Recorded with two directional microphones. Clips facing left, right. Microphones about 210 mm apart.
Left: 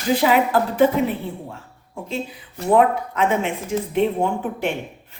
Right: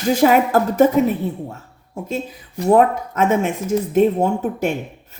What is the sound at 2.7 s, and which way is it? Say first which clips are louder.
A woman's voice: right 2 dB; 45° right (ahead or behind).